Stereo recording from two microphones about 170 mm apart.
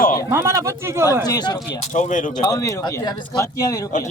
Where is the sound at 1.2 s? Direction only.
25° left (ahead or behind).